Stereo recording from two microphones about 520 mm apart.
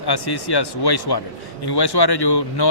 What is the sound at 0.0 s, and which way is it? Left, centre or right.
Speech, left.